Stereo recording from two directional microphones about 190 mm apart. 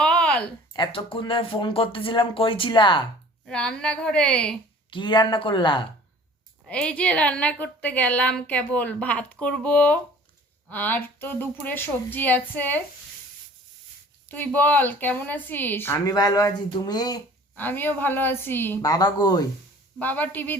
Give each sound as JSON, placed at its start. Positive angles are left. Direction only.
{"t": 0.0, "sound": "a sound", "side_deg": 5}
{"t": 0.7, "sound": "speech", "side_deg": 25}
{"t": 3.4, "sound": "a woman's voice", "side_deg": 5}
{"t": 4.9, "sound": "speech", "side_deg": 25}
{"t": 6.7, "sound": "a woman's voice", "side_deg": 5}
{"t": 14.3, "sound": "a woman's voice", "side_deg": 10}
{"t": 17.6, "sound": "a woman's voice", "side_deg": 10}
{"t": 20.0, "sound": "a woman's voice", "side_deg": 10}